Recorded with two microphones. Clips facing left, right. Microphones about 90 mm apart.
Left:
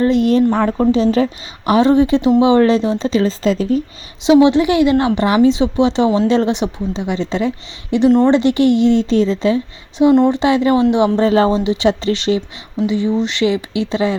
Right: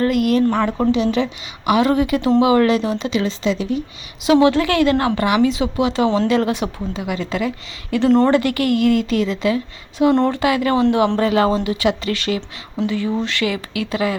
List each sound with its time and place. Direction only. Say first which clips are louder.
0.0 s a woman's voice: left 3 dB; 25° left (ahead or behind); by 3.8 s 40° left (ahead or behind)
4.2 s a woman's voice: left 4 dB; 20° left (ahead or behind)
10.0 s a woman's voice: left 4 dB; 20° left (ahead or behind)